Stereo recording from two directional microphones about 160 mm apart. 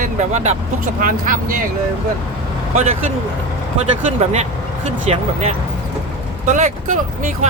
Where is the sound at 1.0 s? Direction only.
55° right (ahead or behind).